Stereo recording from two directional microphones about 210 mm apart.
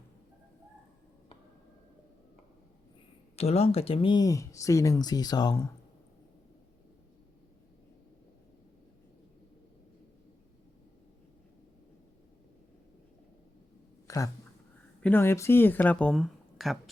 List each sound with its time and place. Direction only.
3.3 s speech: 30° left (ahead or behind)
14.1 s speech: 15° left (ahead or behind); by 16.9 s centre (ahead or behind)